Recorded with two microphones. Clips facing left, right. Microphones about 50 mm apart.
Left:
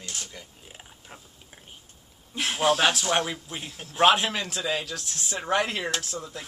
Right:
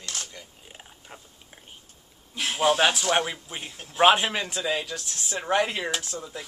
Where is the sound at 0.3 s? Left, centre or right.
Centre.